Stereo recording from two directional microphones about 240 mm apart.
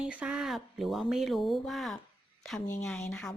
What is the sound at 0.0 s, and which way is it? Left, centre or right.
Speech, centre.